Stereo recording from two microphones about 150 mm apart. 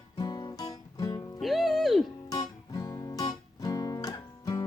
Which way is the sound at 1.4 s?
Centre (ahead or behind).